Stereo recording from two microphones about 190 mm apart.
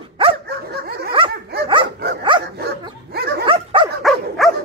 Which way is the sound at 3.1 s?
55° right (ahead or behind).